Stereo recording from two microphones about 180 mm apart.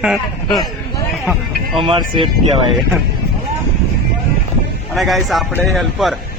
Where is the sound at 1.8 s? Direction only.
30° right (ahead or behind).